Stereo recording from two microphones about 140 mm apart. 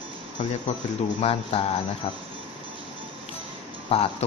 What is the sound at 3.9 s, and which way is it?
Speech, 45° left (ahead or behind).